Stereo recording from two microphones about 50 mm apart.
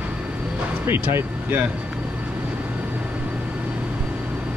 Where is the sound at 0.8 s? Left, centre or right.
Right.